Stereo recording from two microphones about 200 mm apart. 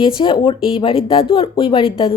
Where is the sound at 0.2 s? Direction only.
25° left (ahead or behind).